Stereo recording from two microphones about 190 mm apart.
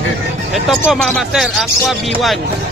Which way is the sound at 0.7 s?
Centre (ahead or behind).